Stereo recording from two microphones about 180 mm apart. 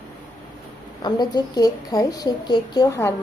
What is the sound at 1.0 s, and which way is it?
A woman's voice, 25° left (ahead or behind).